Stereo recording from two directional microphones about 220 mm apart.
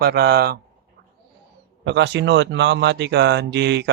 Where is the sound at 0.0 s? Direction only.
45° right (ahead or behind).